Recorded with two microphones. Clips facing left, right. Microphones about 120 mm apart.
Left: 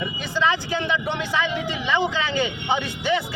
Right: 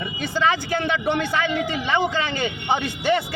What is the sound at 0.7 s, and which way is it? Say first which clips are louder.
A man's voice: right 3 dB; 60° right (ahead or behind).